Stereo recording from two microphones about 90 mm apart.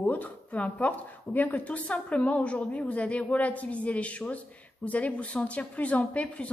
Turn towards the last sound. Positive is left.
turn(degrees=15)  # may be behind; listen again after turning